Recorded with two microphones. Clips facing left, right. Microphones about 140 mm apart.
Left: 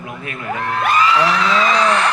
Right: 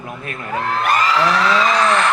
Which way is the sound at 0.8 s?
50° right (ahead or behind).